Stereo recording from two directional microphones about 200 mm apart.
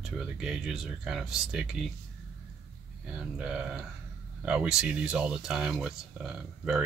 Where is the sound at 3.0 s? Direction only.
5° right (ahead or behind).